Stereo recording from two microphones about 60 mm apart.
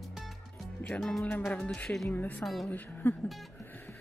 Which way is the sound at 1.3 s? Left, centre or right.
Left.